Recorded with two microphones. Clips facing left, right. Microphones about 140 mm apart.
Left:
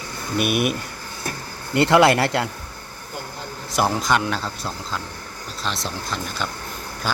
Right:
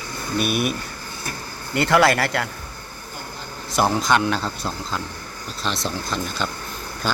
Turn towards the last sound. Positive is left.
turn(degrees=5)  # may be behind; listen again after turning